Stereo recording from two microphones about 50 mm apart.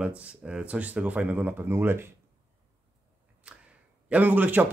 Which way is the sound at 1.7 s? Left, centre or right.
Right.